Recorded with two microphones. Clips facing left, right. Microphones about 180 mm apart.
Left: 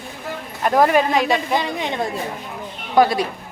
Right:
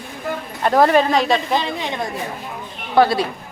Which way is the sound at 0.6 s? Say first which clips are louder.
Right 1 dB; 10° left (ahead or behind).